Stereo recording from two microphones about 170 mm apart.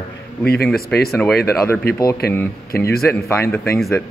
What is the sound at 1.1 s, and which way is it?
Speech, centre (ahead or behind).